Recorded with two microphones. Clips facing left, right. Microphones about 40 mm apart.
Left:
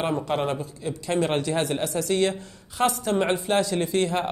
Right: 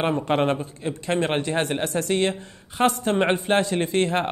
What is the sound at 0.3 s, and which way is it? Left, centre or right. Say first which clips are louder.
Speech: right 4 dB; right.